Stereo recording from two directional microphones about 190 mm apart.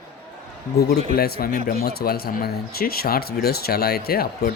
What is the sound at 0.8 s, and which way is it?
A man's voice, 55° left (ahead or behind).